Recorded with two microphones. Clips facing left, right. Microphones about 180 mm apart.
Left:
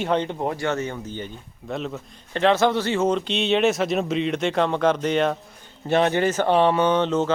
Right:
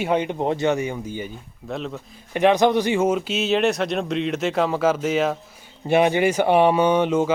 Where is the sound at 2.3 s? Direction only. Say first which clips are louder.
Right 2 dB; 15° right (ahead or behind).